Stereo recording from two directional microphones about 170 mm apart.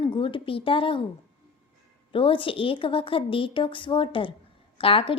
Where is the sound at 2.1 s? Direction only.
30° left (ahead or behind).